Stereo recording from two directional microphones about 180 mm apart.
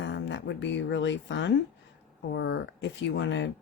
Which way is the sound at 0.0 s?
85° left.